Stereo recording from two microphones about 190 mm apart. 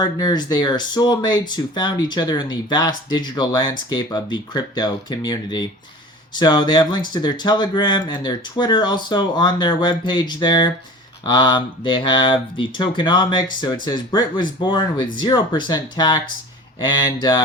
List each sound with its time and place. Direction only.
0.0 s speech: 20° left (ahead or behind)